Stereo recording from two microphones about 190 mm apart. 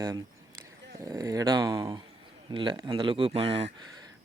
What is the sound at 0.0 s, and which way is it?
Speech, 20° right (ahead or behind).